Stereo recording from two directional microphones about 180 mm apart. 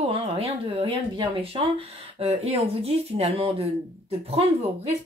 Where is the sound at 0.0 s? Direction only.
35° right (ahead or behind).